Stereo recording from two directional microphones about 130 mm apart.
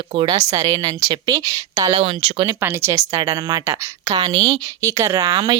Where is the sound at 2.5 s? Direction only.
20° right (ahead or behind).